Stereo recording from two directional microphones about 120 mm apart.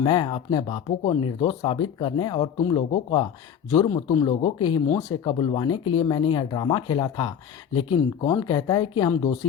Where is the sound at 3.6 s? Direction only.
30° left (ahead or behind).